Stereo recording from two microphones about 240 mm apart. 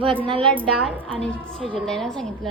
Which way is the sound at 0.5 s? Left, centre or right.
Centre.